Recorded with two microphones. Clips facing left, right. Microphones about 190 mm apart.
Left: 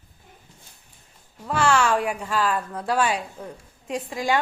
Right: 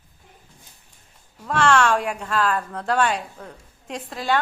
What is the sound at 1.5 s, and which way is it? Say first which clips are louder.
A woman's voice: right 2 dB; 5° left (ahead or behind).